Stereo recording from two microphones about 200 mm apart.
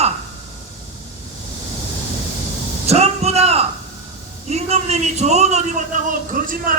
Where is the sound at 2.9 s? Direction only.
30° right (ahead or behind).